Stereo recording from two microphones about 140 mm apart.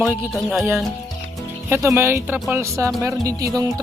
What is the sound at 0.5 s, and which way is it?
Speech, 20° right (ahead or behind).